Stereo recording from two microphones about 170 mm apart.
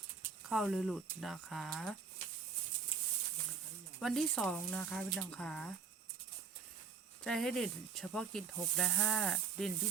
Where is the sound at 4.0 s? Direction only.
Centre (ahead or behind).